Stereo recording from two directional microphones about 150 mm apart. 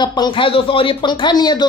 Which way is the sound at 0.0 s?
30° left (ahead or behind).